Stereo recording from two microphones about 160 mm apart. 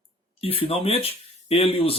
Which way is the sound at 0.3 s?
35° left (ahead or behind).